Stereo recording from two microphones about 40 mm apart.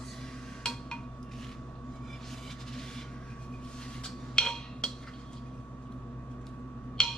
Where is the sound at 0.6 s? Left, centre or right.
Centre.